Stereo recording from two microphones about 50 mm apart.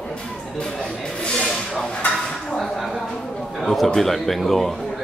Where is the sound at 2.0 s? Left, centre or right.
Left.